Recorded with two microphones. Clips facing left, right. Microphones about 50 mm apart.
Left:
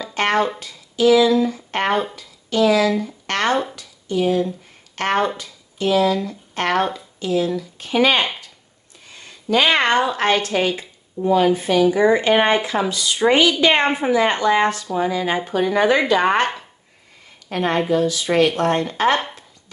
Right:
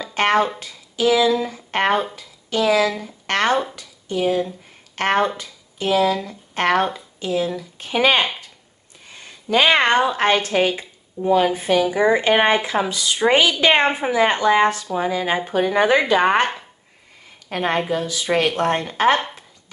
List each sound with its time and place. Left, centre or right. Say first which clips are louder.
0.1 s a sound: right 2 dB; right
0.6 s speech: left 3 dB; right
1.9 s speech: even; centre
2.1 s speech: left 3 dB; centre
17.5 s speech: left 2 dB; right